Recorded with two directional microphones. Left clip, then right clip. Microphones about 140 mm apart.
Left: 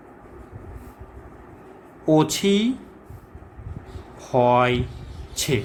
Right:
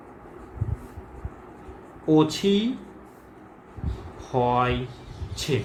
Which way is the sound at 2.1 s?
55° left (ahead or behind).